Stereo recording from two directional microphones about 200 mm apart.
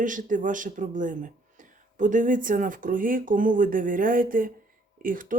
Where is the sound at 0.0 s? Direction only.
40° right (ahead or behind).